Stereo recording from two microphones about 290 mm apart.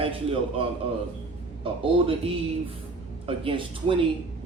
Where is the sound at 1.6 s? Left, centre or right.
Centre.